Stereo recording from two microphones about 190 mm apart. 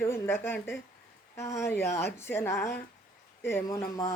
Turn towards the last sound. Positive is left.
turn(degrees=15)  # may be behind; listen again after turning